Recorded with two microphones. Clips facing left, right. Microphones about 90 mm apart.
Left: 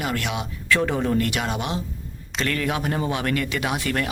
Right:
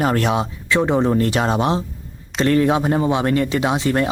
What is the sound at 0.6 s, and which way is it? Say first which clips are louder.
Speech: right 4 dB; 25° right (ahead or behind).